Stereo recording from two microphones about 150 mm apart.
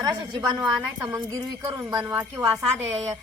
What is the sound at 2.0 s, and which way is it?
Speech, 10° right (ahead or behind).